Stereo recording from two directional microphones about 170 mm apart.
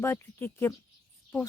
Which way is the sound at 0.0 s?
15° left (ahead or behind).